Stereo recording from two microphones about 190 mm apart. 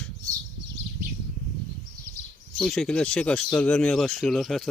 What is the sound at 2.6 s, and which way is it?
Speech, 5° left (ahead or behind).